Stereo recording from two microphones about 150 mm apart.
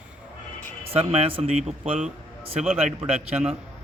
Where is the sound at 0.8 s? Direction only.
40° right (ahead or behind).